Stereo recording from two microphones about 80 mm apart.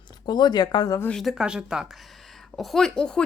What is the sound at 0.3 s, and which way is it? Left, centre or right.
Speech, left.